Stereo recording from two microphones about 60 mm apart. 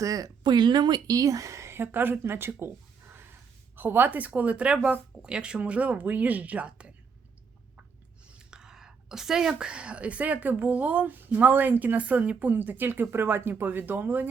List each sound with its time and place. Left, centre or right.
0.0 s speech: right
1.0 s speech: right; by 6.9 s centre
8.3 s speech: centre; by 14.3 s right